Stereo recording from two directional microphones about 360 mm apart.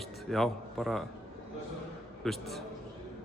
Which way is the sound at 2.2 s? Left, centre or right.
Centre.